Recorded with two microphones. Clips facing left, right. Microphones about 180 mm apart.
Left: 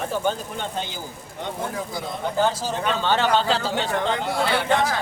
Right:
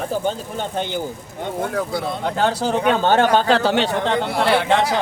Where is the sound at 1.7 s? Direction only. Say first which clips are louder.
Right 7 dB; 70° right (ahead or behind).